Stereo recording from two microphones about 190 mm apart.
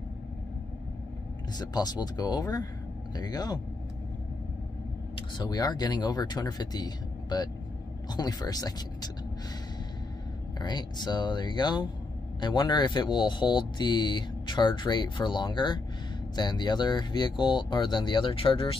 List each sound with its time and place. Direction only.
1.6 s speech: 20° left (ahead or behind)
5.1 s speech: 20° left (ahead or behind)
10.6 s speech: 25° left (ahead or behind)